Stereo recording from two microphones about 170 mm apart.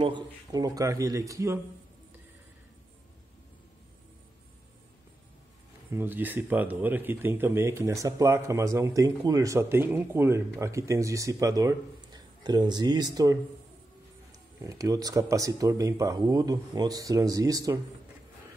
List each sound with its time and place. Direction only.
0.0 s speech: 25° right (ahead or behind)
5.9 s speech: 10° right (ahead or behind)
14.6 s speech: 20° right (ahead or behind)